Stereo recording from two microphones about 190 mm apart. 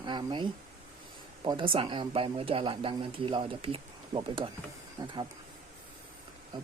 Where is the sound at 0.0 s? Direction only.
25° right (ahead or behind).